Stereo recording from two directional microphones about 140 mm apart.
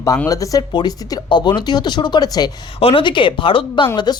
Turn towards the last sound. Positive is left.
turn(degrees=30)  # may be behind; listen again after turning